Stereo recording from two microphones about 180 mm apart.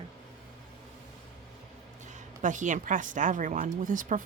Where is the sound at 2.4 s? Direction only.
45° right (ahead or behind).